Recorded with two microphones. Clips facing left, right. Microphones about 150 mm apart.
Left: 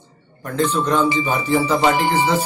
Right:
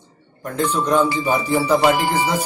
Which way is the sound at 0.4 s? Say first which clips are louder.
Left 1 dB; 10° right (ahead or behind).